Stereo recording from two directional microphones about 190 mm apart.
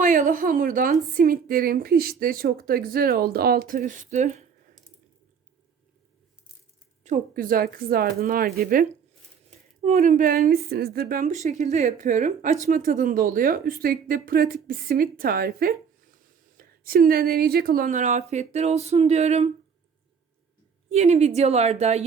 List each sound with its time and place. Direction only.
0.0 s a woman's voice: 45° right (ahead or behind)
7.0 s a woman's voice: 45° right (ahead or behind)
9.8 s a woman's voice: 35° right (ahead or behind)
20.9 s a woman's voice: 35° right (ahead or behind)